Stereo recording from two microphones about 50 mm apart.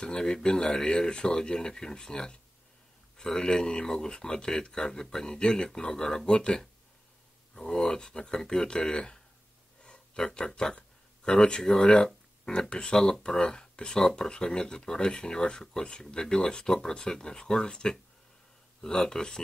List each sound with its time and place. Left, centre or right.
0.0 s speech: centre